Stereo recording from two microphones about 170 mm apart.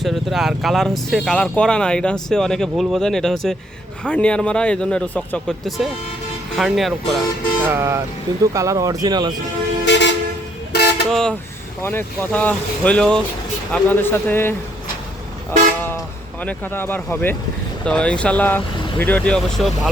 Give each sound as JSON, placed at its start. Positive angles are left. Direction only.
{"t": 0.0, "sound": "speech", "side_deg": 0}
{"t": 7.6, "sound": "speech", "side_deg": -15}
{"t": 9.8, "sound": "toot", "side_deg": 90}
{"t": 10.7, "sound": "vehicle", "side_deg": 70}
{"t": 11.1, "sound": "speech", "side_deg": 5}
{"t": 16.4, "sound": "speech", "side_deg": 10}